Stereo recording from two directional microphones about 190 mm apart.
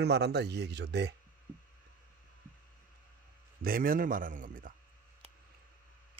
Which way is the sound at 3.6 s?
50° right (ahead or behind).